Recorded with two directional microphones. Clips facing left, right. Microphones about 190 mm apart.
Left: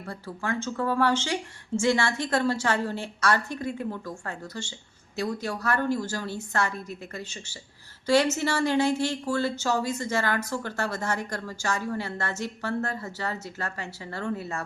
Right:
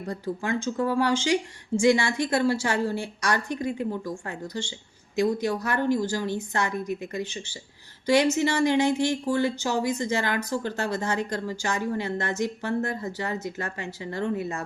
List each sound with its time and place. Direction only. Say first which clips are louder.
0.1 s speech: right 3 dB; 15° right (ahead or behind)